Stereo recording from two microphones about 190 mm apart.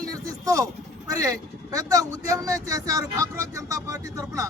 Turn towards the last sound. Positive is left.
turn(degrees=-15)  # may be behind; listen again after turning